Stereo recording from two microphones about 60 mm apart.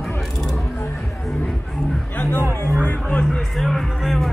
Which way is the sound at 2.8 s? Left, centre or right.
Left.